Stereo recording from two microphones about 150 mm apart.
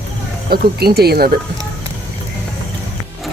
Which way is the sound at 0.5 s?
90° right.